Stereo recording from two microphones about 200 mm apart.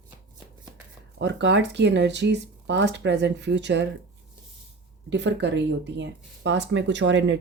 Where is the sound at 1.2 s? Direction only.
60° right (ahead or behind).